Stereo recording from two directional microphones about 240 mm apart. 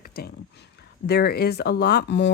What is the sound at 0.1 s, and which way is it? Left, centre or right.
Speech, left.